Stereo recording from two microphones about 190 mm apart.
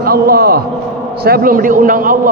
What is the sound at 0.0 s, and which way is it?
A man's voice, 50° right (ahead or behind).